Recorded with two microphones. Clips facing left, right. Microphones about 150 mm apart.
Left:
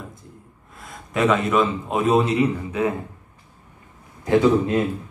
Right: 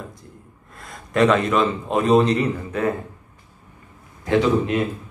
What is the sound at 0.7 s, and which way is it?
A man's voice, 5° left (ahead or behind).